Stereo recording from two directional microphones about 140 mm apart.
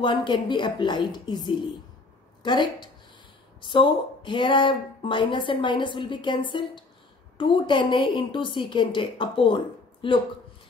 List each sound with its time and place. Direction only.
0.0 s a woman's voice: 35° left (ahead or behind)